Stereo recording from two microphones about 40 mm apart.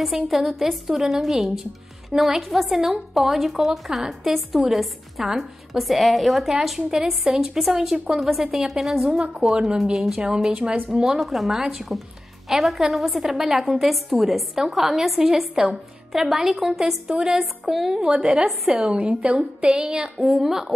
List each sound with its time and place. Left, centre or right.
0.0 s a woman's voice: centre
9.1 s a sound: centre
9.5 s a woman's voice: centre
11.1 s a woman's voice: centre
13.7 s a woman's voice: centre
18.8 s a sound: right
20.3 s a woman's voice: centre